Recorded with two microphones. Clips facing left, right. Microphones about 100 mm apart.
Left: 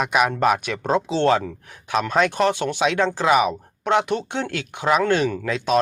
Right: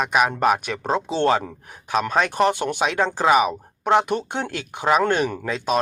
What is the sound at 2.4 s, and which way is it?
Speech, 10° right (ahead or behind).